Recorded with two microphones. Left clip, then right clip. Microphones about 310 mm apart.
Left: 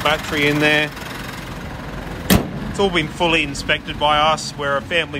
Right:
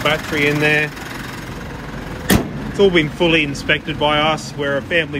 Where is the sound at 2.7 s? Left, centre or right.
Centre.